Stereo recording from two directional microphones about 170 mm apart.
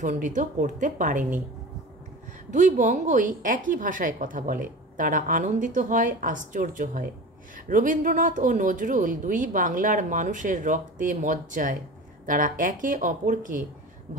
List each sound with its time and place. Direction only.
0.0 s a woman's voice: 45° right (ahead or behind)
2.5 s a woman's voice: 50° right (ahead or behind)